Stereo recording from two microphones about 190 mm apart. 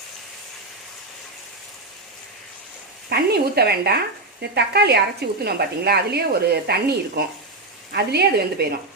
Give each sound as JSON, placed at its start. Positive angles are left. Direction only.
{"t": 3.1, "sound": "speech", "side_deg": -55}